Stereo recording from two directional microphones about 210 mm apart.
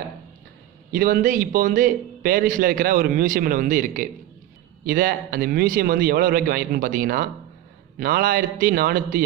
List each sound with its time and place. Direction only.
0.9 s a man's voice: 45° right (ahead or behind)